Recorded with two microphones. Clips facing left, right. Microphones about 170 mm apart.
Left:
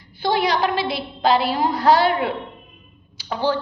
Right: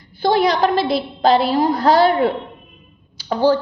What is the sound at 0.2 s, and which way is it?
A woman's voice, 40° right (ahead or behind).